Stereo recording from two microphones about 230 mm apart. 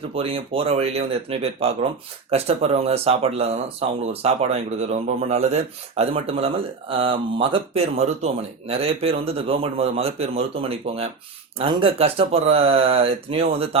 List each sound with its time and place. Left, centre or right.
0.1 s speech: right